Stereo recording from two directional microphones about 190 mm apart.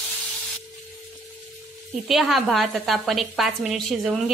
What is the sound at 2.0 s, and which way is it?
A woman's voice, centre (ahead or behind).